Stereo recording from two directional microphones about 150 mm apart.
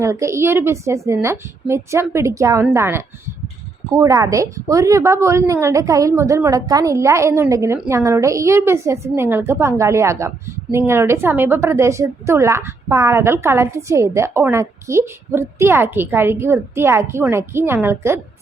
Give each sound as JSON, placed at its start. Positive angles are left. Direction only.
{"t": 0.0, "sound": "a woman's voice", "side_deg": -20}